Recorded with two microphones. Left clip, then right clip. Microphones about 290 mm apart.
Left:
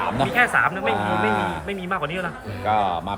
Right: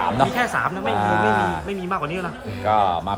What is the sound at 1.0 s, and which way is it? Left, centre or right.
Speech, right.